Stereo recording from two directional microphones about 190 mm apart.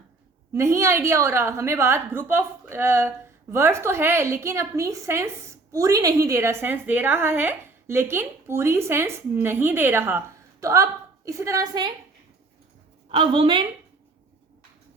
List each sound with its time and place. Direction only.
0.5 s a woman's voice: 15° right (ahead or behind)
13.1 s a woman's voice: 25° right (ahead or behind)